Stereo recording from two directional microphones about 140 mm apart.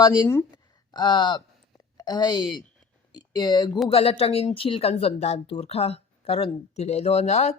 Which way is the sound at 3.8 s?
45° left (ahead or behind).